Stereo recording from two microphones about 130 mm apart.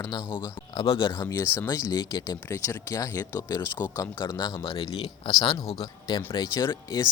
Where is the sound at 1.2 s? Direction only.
25° left (ahead or behind).